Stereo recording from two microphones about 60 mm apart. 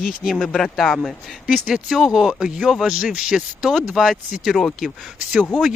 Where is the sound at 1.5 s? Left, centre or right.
Centre.